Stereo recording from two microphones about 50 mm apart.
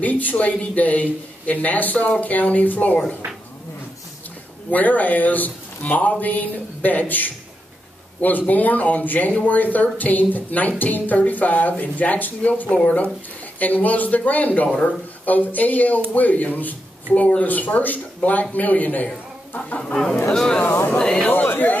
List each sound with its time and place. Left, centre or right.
0.0 s speech: left
4.6 s speech: left
19.8 s speech: centre
21.3 s speech: left